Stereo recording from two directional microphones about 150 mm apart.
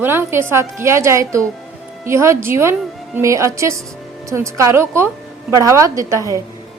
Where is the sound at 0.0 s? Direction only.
15° right (ahead or behind).